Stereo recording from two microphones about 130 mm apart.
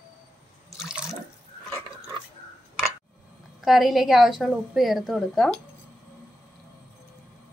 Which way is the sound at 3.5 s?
Centre (ahead or behind).